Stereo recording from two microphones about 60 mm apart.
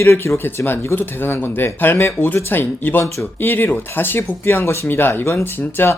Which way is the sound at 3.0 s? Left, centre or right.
Left.